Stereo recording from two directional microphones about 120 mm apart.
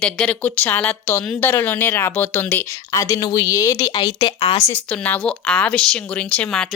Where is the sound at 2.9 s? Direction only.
30° left (ahead or behind).